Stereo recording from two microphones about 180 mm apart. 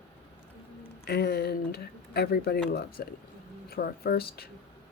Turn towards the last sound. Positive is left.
turn(degrees=60)  # may be behind; listen again after turning